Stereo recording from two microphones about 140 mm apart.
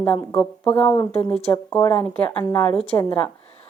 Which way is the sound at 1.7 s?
20° left (ahead or behind).